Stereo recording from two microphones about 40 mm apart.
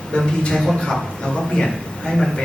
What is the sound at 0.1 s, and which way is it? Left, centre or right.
A man's voice, left.